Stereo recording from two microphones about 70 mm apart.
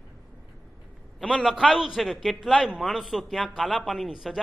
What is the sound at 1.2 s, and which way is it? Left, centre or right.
Speech, centre.